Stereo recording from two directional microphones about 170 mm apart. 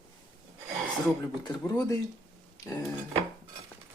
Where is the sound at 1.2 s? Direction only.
20° left (ahead or behind).